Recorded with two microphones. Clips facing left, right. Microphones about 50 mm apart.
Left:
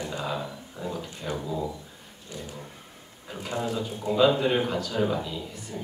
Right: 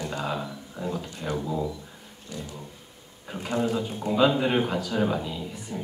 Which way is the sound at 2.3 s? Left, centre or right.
Left.